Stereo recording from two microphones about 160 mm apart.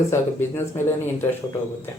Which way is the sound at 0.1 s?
15° left (ahead or behind).